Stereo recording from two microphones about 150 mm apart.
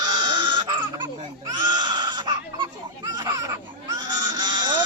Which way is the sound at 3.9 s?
25° right (ahead or behind).